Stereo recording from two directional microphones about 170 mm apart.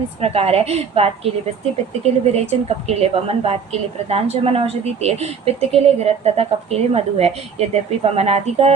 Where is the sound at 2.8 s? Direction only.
35° right (ahead or behind).